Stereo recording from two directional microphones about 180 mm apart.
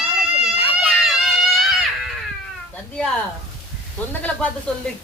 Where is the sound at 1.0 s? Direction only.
Centre (ahead or behind).